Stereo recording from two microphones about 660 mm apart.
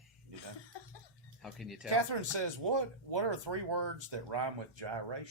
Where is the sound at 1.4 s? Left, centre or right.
Centre.